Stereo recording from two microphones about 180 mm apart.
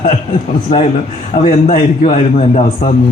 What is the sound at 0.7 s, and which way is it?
A man's voice, 40° left (ahead or behind).